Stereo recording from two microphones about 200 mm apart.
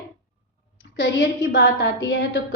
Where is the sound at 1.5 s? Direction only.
60° left (ahead or behind).